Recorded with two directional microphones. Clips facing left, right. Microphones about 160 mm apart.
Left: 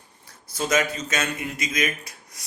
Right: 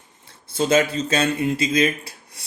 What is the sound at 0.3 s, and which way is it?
Speech, 30° right (ahead or behind).